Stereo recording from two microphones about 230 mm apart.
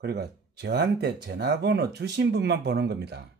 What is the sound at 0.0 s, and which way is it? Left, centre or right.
Speech, right.